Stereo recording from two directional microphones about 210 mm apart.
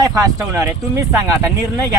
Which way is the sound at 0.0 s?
15° right (ahead or behind).